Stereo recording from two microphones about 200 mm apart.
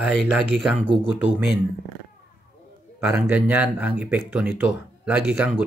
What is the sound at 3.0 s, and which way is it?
Speech, 10° right (ahead or behind).